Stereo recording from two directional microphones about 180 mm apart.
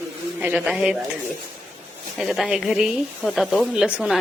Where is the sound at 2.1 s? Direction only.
Centre (ahead or behind).